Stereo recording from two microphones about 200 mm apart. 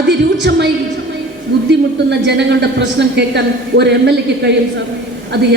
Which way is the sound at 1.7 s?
60° right (ahead or behind).